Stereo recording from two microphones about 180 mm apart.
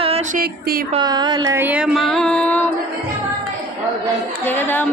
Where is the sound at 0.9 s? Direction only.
25° right (ahead or behind).